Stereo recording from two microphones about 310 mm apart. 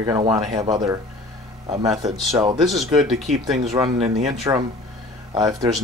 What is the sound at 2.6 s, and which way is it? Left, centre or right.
Speech, centre.